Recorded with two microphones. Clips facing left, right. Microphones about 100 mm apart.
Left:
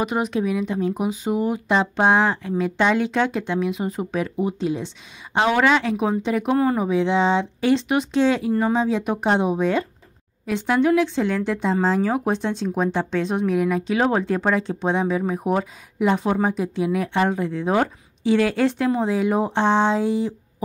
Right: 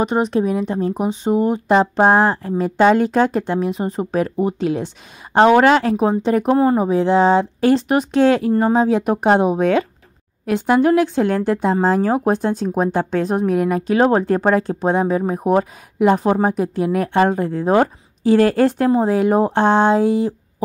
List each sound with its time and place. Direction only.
0.0 s speech: 35° right (ahead or behind); by 9.8 s 60° right (ahead or behind)
10.4 s speech: 50° right (ahead or behind)